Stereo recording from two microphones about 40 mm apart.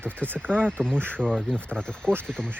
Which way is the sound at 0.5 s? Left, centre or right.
Left.